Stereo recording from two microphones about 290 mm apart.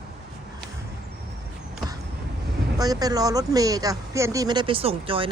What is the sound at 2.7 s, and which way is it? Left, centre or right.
Speech, centre.